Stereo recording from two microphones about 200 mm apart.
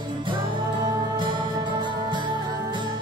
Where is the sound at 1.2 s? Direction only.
25° right (ahead or behind).